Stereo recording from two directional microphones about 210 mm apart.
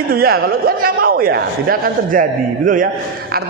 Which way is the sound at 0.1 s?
45° right (ahead or behind).